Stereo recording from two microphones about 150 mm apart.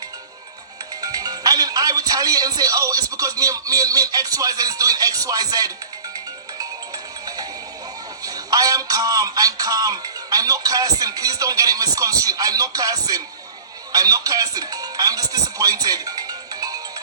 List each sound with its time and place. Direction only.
1.0 s speech: 25° right (ahead or behind)
6.1 s music: 25° right (ahead or behind)
8.2 s speech: 25° right (ahead or behind)
13.9 s music: 25° right (ahead or behind)